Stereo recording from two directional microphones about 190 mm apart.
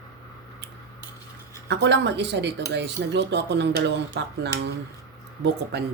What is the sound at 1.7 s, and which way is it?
Speech, 65° right (ahead or behind).